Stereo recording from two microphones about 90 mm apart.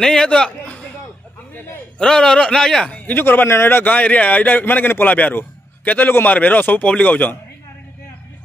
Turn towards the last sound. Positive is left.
turn(degrees=15)  # may be behind; listen again after turning